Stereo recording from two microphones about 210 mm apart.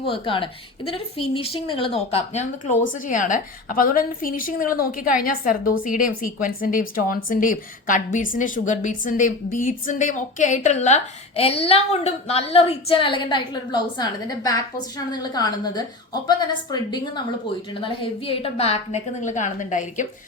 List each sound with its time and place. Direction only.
0.0 s a woman's voice: 25° left (ahead or behind)